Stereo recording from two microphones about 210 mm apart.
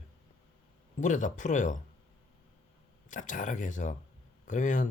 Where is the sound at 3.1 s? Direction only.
35° left (ahead or behind).